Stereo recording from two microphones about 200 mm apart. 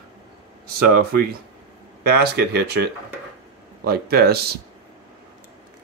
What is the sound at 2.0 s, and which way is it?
Speech, 50° right (ahead or behind).